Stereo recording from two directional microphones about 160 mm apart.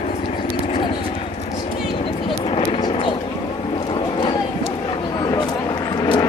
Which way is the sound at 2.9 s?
35° left (ahead or behind).